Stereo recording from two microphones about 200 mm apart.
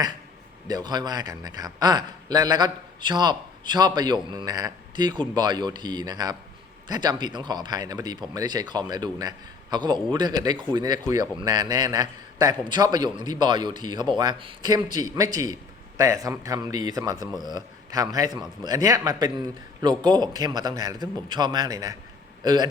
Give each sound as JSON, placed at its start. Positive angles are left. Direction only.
{"t": 0.7, "sound": "a man's voice", "side_deg": -20}